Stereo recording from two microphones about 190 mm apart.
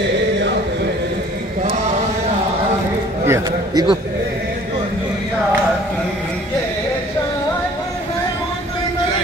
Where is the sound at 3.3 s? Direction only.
20° right (ahead or behind).